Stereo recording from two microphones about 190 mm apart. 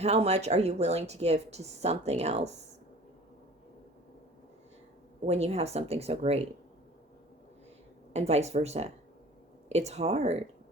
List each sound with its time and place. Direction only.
0.0 s a woman's voice: 35° right (ahead or behind)
5.2 s a woman's voice: 35° right (ahead or behind)
8.1 s a woman's voice: 35° right (ahead or behind)